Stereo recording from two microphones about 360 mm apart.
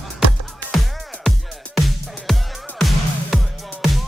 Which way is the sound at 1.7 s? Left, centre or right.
Centre.